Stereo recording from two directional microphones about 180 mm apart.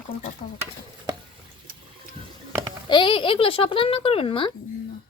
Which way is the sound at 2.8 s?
25° left (ahead or behind).